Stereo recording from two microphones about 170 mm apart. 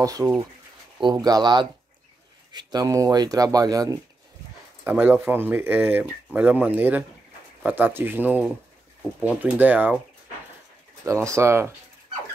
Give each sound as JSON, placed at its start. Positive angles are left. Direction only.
{"t": 0.0, "sound": "speech", "side_deg": -20}
{"t": 4.8, "sound": "speech", "side_deg": -10}
{"t": 11.1, "sound": "speech", "side_deg": -15}